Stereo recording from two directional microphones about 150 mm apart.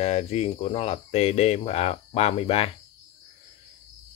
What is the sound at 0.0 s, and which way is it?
Speech, 45° left (ahead or behind).